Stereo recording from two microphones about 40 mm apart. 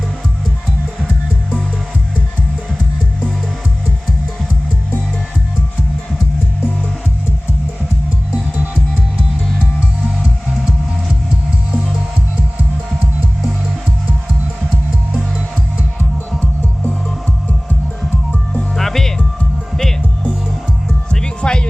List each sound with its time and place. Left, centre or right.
18.8 s music: centre
21.1 s music: left